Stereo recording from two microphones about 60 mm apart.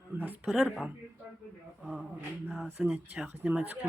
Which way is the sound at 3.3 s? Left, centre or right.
Right.